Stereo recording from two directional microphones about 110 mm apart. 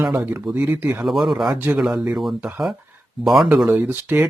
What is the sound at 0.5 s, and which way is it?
Speech, 15° right (ahead or behind).